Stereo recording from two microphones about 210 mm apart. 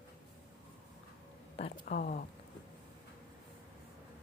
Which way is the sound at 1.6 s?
35° left (ahead or behind).